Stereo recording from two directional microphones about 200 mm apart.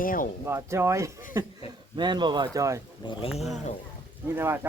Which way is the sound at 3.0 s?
25° left (ahead or behind).